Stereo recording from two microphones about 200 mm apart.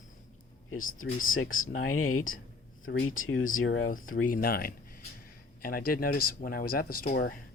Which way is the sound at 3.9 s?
45° left (ahead or behind).